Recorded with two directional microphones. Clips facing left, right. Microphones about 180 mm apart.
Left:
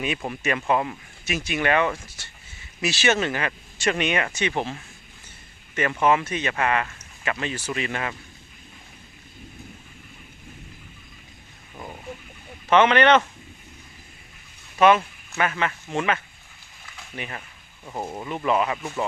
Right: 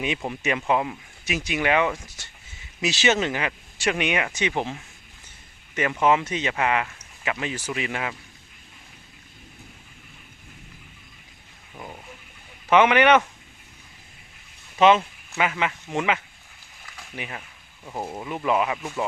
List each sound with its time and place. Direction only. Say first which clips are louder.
0.2 s speech: even; 15° right (ahead or behind)
11.7 s a sound: left 1 dB; centre (ahead or behind)
12.7 s speech: even; 10° right (ahead or behind)
14.8 s speech: even; 20° right (ahead or behind)